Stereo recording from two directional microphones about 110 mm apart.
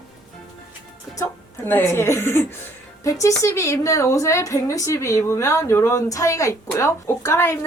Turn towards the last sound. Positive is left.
turn(degrees=25)  # may be behind; listen again after turning